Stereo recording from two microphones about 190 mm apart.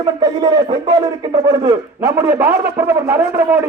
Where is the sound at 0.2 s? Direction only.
20° right (ahead or behind).